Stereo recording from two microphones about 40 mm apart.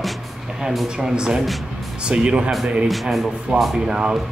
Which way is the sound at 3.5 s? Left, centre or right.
Right.